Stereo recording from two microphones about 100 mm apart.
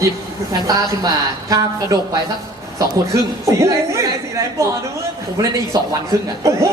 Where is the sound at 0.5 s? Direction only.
35° right (ahead or behind).